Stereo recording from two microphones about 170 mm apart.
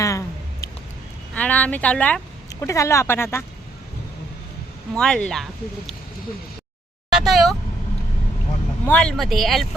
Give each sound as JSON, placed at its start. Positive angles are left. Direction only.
{"t": 0.0, "sound": "a sound", "side_deg": 20}
{"t": 1.3, "sound": "speech", "side_deg": 10}
{"t": 2.5, "sound": "speech", "side_deg": 20}
{"t": 4.9, "sound": "speech", "side_deg": 5}
{"t": 7.1, "sound": "a sound", "side_deg": 0}
{"t": 8.9, "sound": "speech", "side_deg": 5}